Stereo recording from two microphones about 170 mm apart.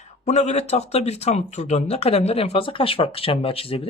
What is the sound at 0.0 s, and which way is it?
Speech, 40° left (ahead or behind).